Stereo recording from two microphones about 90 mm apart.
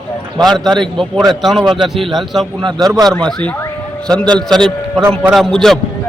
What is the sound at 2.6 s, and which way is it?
Speech, 50° right (ahead or behind).